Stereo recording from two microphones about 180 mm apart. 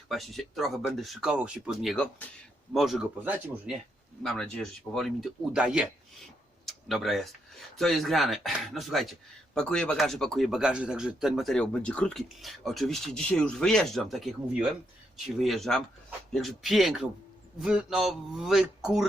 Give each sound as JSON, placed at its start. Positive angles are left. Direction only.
{"t": 0.1, "sound": "speech", "side_deg": 0}